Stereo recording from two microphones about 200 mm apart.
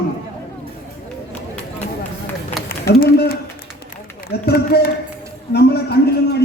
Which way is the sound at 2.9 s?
50° left (ahead or behind).